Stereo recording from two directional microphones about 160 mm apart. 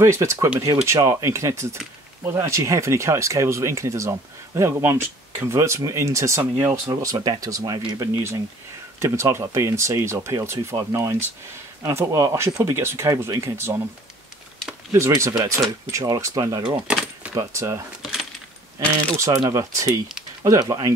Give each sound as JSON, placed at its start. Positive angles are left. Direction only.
{"t": 0.0, "sound": "speech", "side_deg": -20}
{"t": 14.9, "sound": "speech", "side_deg": -20}
{"t": 16.8, "sound": "a sound", "side_deg": -5}
{"t": 17.3, "sound": "speech", "side_deg": -20}
{"t": 19.1, "sound": "speech", "side_deg": -20}